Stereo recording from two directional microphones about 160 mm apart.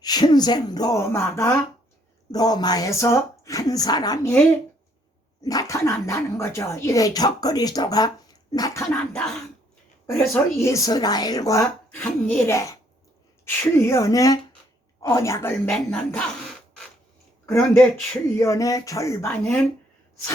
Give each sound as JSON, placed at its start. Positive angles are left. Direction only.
{"t": 0.0, "sound": "speech", "side_deg": 25}
{"t": 5.4, "sound": "speech", "side_deg": 25}
{"t": 10.1, "sound": "speech", "side_deg": 15}
{"t": 11.9, "sound": "speech", "side_deg": 10}
{"t": 17.4, "sound": "speech", "side_deg": 15}